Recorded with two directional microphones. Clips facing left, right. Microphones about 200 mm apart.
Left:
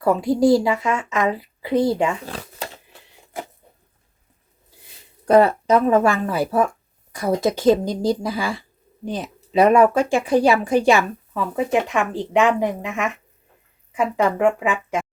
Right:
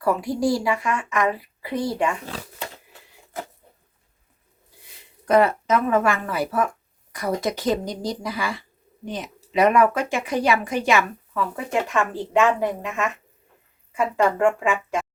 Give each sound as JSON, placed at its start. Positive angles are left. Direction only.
{"t": 0.0, "sound": "speech", "side_deg": 25}
{"t": 5.2, "sound": "speech", "side_deg": 35}